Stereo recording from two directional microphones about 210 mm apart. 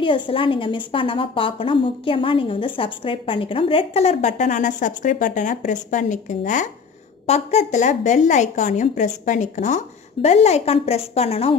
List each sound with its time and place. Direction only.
0.0 s a woman's voice: 25° left (ahead or behind)